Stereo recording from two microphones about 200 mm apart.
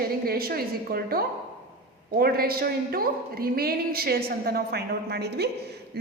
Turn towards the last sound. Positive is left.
turn(degrees=-55)  # may be behind; listen again after turning